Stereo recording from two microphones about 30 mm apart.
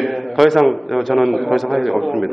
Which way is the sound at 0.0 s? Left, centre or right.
Centre.